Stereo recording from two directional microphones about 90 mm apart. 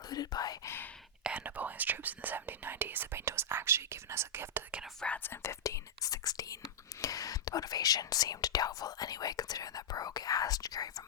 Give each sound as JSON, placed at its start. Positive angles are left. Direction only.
{"t": 0.1, "sound": "whispering", "side_deg": 45}
{"t": 0.6, "sound": "whispering", "side_deg": 25}
{"t": 1.2, "sound": "speech", "side_deg": -15}
{"t": 4.9, "sound": "speech", "side_deg": 15}
{"t": 5.3, "sound": "speech", "side_deg": 30}